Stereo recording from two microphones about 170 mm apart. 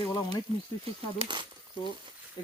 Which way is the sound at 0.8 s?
30° right (ahead or behind).